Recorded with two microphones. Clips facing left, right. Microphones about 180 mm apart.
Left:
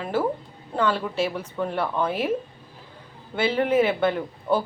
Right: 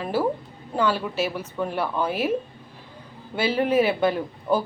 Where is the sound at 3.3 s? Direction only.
10° right (ahead or behind).